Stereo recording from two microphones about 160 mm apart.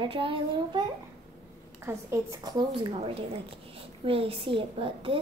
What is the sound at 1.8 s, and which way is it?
Child singing, 20° right (ahead or behind).